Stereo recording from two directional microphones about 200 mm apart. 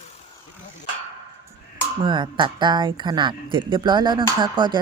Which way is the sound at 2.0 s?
20° right (ahead or behind).